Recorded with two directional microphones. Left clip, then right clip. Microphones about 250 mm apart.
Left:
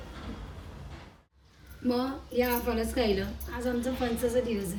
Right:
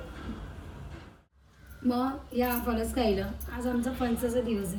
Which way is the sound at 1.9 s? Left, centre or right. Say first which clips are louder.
Even; centre.